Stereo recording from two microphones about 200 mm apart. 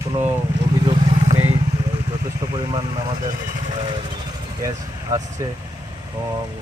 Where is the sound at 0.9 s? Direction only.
25° right (ahead or behind).